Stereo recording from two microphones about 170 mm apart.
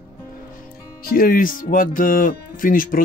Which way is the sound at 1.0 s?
60° left (ahead or behind).